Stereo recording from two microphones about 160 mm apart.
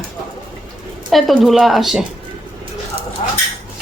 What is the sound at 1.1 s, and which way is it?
Speech, centre (ahead or behind).